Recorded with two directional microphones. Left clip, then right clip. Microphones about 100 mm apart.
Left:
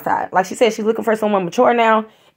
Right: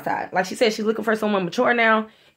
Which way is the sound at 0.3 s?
45° left (ahead or behind).